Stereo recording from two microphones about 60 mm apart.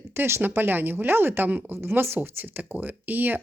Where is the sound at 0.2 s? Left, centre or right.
Right.